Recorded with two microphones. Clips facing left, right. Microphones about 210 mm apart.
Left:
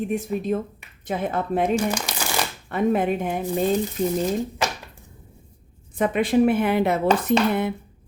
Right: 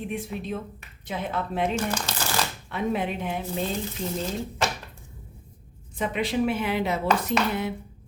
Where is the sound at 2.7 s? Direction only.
50° left (ahead or behind).